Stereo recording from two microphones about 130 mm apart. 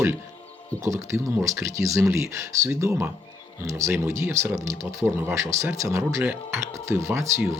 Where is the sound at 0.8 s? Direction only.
25° right (ahead or behind).